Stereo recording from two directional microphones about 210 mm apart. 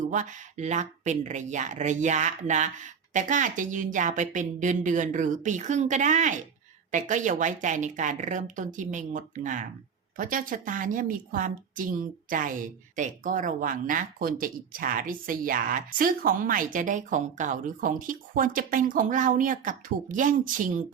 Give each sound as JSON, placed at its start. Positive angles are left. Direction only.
{"t": 0.1, "sound": "a woman's voice", "side_deg": -35}